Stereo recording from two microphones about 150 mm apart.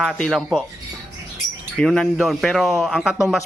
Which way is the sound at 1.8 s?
5° left (ahead or behind).